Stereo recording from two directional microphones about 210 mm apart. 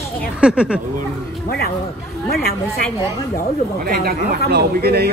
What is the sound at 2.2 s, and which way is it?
Speech, 45° left (ahead or behind).